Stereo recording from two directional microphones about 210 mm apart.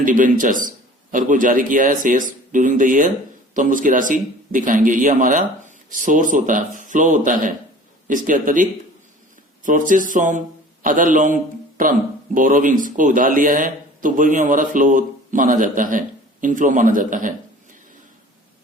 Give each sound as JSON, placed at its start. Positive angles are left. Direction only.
{"t": 0.0, "sound": "speech", "side_deg": -40}
{"t": 9.6, "sound": "speech", "side_deg": -40}